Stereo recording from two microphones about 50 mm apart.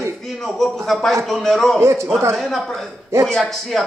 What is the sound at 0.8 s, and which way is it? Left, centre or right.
A man's voice, centre.